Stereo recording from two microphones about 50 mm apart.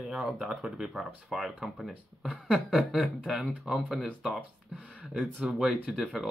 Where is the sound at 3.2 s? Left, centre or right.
Centre.